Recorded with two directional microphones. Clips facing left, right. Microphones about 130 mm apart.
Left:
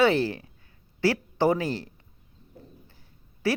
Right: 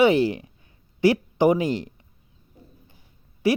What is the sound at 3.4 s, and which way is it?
Speech, 15° right (ahead or behind).